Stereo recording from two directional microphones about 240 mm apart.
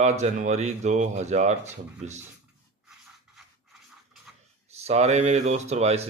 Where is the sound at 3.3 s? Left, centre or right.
Centre.